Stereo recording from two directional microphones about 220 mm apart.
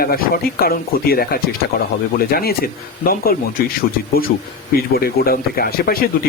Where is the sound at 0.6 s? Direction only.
45° left (ahead or behind).